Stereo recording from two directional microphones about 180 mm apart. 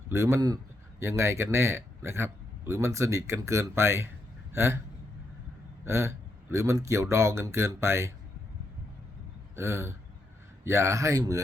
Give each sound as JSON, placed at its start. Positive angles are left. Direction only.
{"t": 0.1, "sound": "speech", "side_deg": -15}
{"t": 5.8, "sound": "speech", "side_deg": -15}
{"t": 9.6, "sound": "speech", "side_deg": -15}